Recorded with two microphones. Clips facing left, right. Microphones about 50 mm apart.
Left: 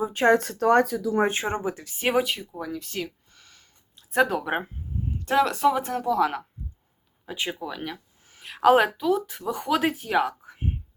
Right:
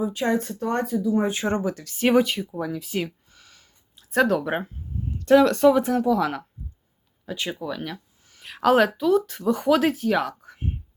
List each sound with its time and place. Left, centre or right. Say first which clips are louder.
0.1 s speech: left 5 dB; left
0.3 s speech: left 5 dB; left
1.5 s speech: right 3 dB; centre
2.0 s speech: right 4 dB; centre
7.3 s speech: right 1 dB; centre
7.6 s speech: right 2 dB; centre